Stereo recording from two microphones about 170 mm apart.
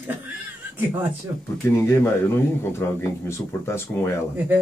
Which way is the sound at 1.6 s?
15° left (ahead or behind).